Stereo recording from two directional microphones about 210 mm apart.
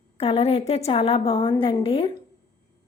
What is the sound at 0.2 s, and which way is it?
A woman's voice, 25° left (ahead or behind).